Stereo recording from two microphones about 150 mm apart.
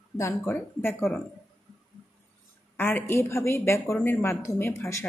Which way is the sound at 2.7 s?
15° left (ahead or behind).